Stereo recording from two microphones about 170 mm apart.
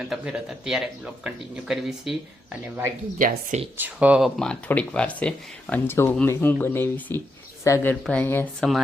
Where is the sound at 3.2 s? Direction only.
55° right (ahead or behind).